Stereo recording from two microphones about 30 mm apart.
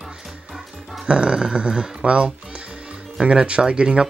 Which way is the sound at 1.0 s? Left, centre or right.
Right.